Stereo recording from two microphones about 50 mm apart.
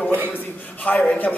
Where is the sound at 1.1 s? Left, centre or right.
Left.